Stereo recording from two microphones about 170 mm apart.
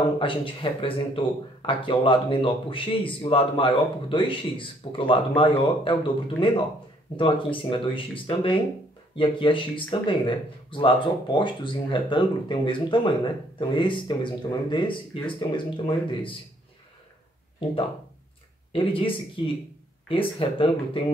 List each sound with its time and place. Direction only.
0.2 s speech: 30° left (ahead or behind)
18.7 s speech: 30° left (ahead or behind)